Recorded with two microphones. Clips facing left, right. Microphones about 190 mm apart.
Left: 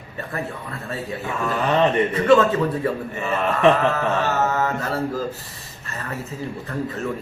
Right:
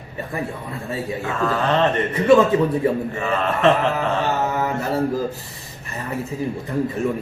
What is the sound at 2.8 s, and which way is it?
Speech, 15° right (ahead or behind).